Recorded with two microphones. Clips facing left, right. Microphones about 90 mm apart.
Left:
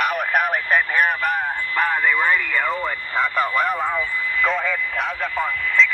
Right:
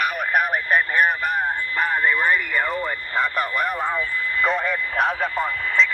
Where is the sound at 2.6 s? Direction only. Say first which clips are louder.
Left 2 dB; 25° left (ahead or behind).